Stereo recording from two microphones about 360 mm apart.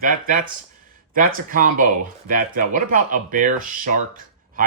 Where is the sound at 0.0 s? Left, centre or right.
Right.